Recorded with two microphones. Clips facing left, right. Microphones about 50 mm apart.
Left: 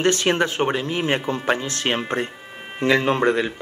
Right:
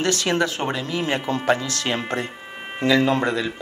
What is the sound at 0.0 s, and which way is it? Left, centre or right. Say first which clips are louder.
Speech: left 2 dB; left.